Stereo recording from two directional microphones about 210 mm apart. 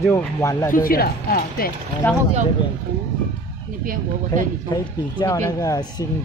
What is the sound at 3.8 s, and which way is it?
Speech, 40° right (ahead or behind).